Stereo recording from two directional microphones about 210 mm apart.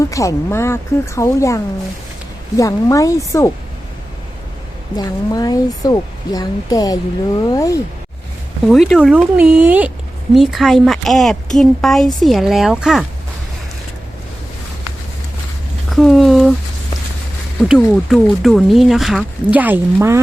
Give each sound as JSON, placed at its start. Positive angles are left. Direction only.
{"t": 0.0, "sound": "speech", "side_deg": 15}
{"t": 4.9, "sound": "speech", "side_deg": 20}
{"t": 8.6, "sound": "speech", "side_deg": 0}
{"t": 15.9, "sound": "a sound", "side_deg": 0}
{"t": 17.7, "sound": "speech", "side_deg": 0}